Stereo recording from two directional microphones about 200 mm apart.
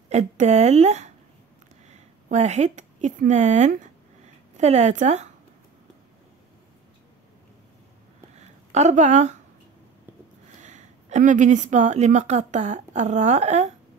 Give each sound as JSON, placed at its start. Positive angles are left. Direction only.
{"t": 0.1, "sound": "a woman's voice", "side_deg": -35}
{"t": 8.4, "sound": "speech", "side_deg": -35}
{"t": 10.6, "sound": "a woman's voice", "side_deg": -35}